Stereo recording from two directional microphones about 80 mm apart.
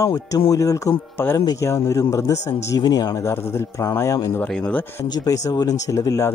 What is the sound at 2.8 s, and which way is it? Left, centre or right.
Speech, left.